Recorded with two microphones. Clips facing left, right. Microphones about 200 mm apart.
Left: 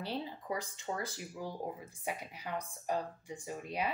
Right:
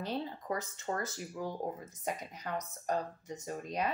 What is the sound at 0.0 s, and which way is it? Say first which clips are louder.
Speech: right 2 dB; 10° left (ahead or behind).